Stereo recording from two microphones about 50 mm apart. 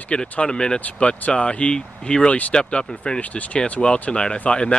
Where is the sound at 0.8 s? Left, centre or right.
Left.